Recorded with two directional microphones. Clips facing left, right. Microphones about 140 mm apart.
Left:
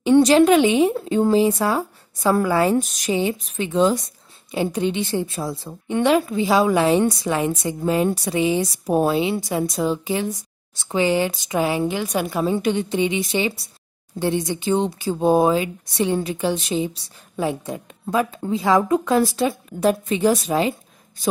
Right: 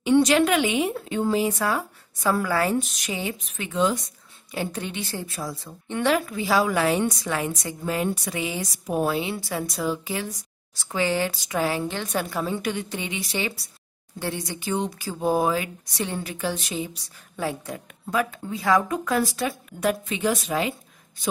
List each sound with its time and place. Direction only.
0.2 s a woman's voice: 30° left (ahead or behind)
2.8 s a woman's voice: 40° left (ahead or behind)
4.5 s a woman's voice: 20° left (ahead or behind)
12.4 s a woman's voice: 25° left (ahead or behind)